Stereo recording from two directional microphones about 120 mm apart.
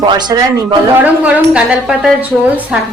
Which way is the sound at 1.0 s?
10° right (ahead or behind).